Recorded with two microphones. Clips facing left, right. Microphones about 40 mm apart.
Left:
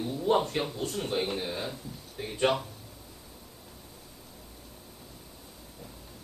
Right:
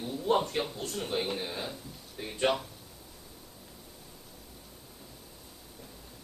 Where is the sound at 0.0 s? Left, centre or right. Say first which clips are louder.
Left 2 dB; centre.